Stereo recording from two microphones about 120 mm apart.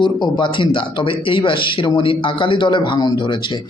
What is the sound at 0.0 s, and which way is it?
A man's voice, 40° left (ahead or behind).